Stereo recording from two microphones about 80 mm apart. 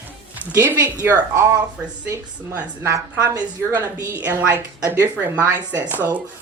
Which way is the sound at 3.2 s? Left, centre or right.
Right.